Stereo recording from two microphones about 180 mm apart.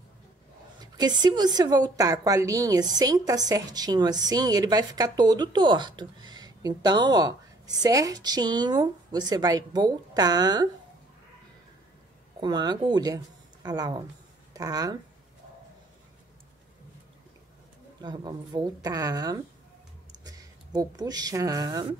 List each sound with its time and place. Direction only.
0.9 s a woman's voice: 25° right (ahead or behind)
12.4 s speech: 25° right (ahead or behind)
18.0 s a woman's voice: 25° right (ahead or behind)